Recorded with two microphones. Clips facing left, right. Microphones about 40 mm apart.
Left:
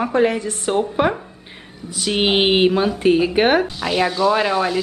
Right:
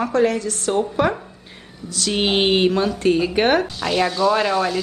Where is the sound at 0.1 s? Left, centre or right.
Centre.